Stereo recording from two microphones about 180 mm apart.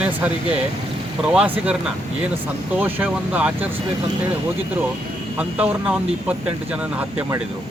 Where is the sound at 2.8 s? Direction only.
10° right (ahead or behind).